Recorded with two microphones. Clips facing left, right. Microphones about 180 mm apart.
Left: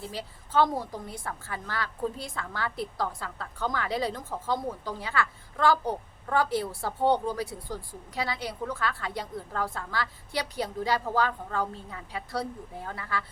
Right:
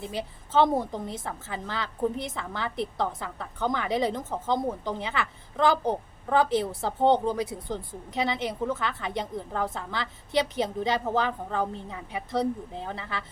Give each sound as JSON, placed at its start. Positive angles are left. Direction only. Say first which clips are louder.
{"t": 0.0, "sound": "a woman's voice", "louder": "right 4 dB", "side_deg": -20}